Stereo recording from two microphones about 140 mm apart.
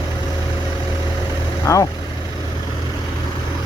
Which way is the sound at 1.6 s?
25° left (ahead or behind).